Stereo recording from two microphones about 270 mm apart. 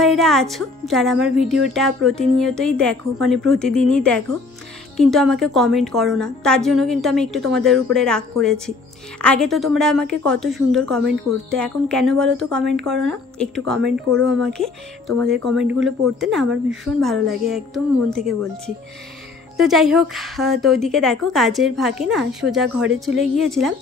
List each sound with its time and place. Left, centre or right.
0.0 s a woman's voice: centre
13.7 s speech: right
14.4 s a woman's voice: centre
19.5 s a woman's voice: centre